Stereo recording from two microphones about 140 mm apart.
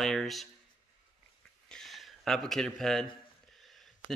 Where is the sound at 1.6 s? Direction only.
5° left (ahead or behind).